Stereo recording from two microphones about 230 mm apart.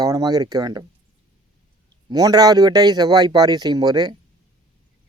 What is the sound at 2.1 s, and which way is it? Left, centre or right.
Speech, centre.